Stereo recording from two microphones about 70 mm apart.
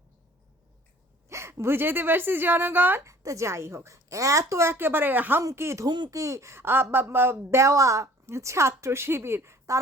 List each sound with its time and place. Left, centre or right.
1.3 s a woman's voice: right
3.0 s a woman's voice: right
5.4 s a woman's voice: right
5.8 s speech: right
6.1 s a woman's voice: right